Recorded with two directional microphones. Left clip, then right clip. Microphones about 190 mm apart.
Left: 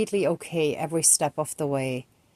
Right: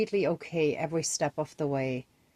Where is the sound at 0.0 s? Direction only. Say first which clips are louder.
Left 3 dB; 30° left (ahead or behind).